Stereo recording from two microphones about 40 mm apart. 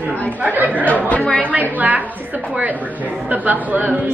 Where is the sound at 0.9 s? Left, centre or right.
Left.